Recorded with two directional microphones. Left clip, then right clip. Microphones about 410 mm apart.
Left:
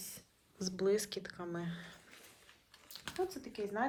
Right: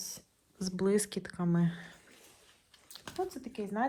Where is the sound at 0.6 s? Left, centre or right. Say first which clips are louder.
Right 3 dB; centre.